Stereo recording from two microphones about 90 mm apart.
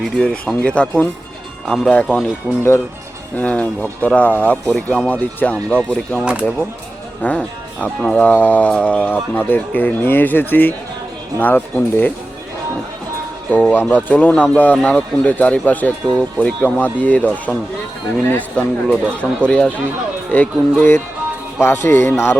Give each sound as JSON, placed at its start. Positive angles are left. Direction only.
{"t": 0.0, "sound": "speech", "side_deg": 5}
{"t": 1.9, "sound": "speech", "side_deg": 15}
{"t": 3.3, "sound": "speech", "side_deg": 15}
{"t": 7.2, "sound": "speech", "side_deg": 15}
{"t": 13.5, "sound": "speech", "side_deg": 15}